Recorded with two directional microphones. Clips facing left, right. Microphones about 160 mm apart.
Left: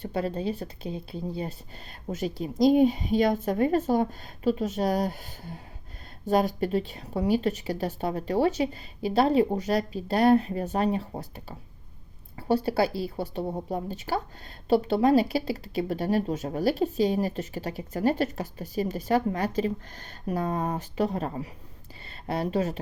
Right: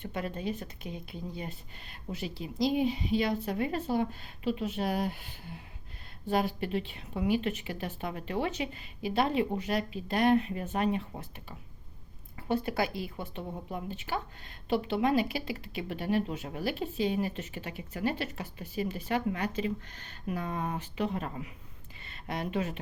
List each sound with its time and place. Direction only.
0.0 s speech: 35° left (ahead or behind)